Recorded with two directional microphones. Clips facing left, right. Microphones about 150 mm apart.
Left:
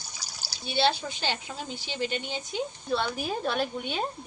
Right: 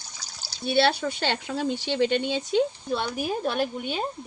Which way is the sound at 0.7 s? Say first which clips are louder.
Right 4 dB; 60° right (ahead or behind).